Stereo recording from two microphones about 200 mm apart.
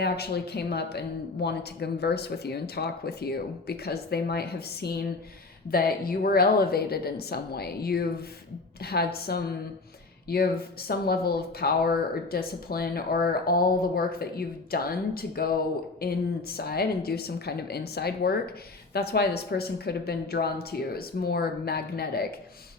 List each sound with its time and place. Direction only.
0.0 s speech: 55° left (ahead or behind)